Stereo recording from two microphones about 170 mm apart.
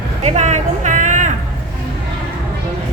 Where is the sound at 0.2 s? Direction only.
40° right (ahead or behind).